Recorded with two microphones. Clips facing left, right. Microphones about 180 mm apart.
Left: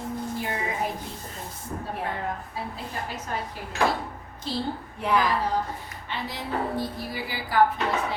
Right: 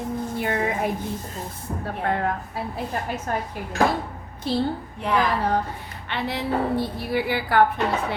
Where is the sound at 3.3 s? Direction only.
55° right (ahead or behind).